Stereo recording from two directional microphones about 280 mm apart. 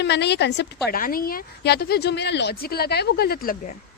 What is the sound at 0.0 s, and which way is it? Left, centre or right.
A woman's voice, left.